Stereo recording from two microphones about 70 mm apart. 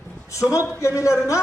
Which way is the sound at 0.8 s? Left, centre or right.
Left.